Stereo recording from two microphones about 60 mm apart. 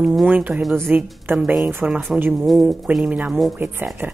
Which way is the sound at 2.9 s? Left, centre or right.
Right.